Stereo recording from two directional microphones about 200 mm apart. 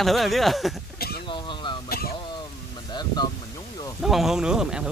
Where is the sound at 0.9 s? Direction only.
50° left (ahead or behind).